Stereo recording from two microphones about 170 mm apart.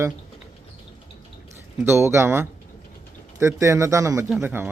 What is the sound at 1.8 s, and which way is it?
A man's voice, 15° right (ahead or behind).